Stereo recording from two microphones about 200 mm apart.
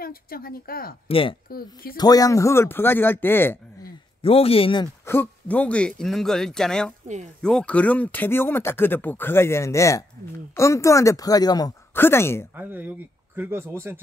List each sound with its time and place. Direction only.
0.0 s speech: 50° left (ahead or behind)
1.0 s speech: 25° left (ahead or behind)
1.5 s speech: 50° left (ahead or behind)
2.0 s speech: 20° left (ahead or behind)
4.2 s speech: 30° left (ahead or behind)
5.0 s speech: 10° left (ahead or behind)
12.5 s speech: 10° right (ahead or behind)